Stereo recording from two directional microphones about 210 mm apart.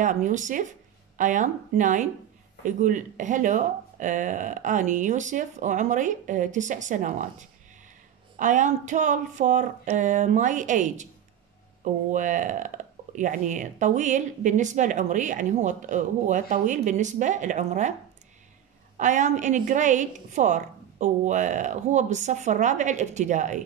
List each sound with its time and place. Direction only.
0.0 s speech: 35° right (ahead or behind)
18.9 s speech: 35° right (ahead or behind)